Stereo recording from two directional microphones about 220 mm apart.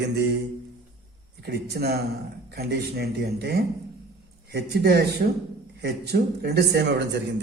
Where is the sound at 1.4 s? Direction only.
45° right (ahead or behind).